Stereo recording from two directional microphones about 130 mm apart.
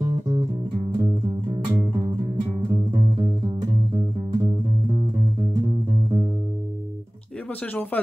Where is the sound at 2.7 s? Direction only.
35° right (ahead or behind).